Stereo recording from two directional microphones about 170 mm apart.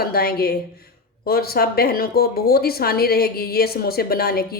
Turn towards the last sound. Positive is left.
turn(degrees=65)  # may be behind; listen again after turning